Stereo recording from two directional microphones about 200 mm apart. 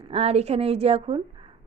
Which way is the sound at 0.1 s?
30° right (ahead or behind).